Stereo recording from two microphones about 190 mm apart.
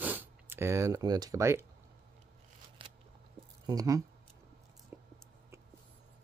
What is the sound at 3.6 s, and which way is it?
Speech, 20° right (ahead or behind).